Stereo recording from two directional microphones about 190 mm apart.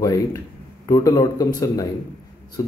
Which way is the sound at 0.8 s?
15° left (ahead or behind).